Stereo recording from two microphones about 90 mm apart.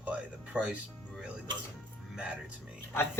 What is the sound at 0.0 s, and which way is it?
Music, 15° right (ahead or behind).